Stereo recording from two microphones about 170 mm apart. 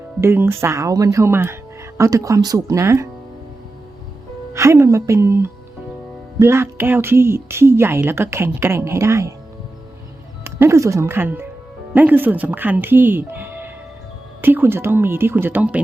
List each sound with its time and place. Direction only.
0.2 s a woman's voice: 15° right (ahead or behind)
4.5 s a woman's voice: 15° right (ahead or behind)
10.4 s a woman's voice: 15° right (ahead or behind)